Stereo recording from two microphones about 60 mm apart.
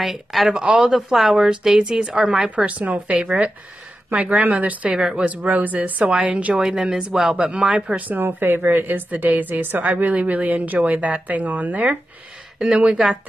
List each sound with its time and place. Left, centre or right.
0.0 s speech: centre
2.5 s a woman's voice: right
4.8 s a woman's voice: centre
6.6 s a woman's voice: centre
8.2 s a woman's voice: right; by 13.0 s centre